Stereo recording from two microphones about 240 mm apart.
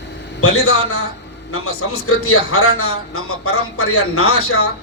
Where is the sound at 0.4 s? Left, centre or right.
Left.